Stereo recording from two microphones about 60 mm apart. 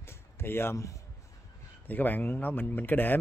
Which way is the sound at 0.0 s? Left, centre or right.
Left.